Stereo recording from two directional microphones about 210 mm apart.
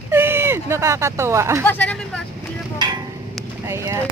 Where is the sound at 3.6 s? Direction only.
15° right (ahead or behind).